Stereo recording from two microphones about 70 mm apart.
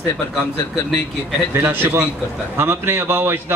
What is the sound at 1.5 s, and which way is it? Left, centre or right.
A man's voice, right.